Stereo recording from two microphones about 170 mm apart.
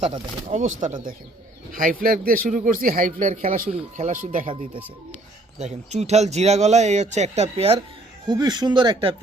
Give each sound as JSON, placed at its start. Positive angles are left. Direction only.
{"t": 0.0, "sound": "speech", "side_deg": -45}
{"t": 3.7, "sound": "speech", "side_deg": -40}
{"t": 5.5, "sound": "speech", "side_deg": -40}
{"t": 8.3, "sound": "speech", "side_deg": -25}